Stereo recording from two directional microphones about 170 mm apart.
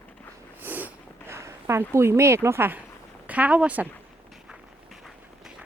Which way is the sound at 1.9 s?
15° right (ahead or behind).